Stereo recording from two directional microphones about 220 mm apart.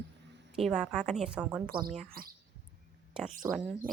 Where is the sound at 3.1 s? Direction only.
5° right (ahead or behind).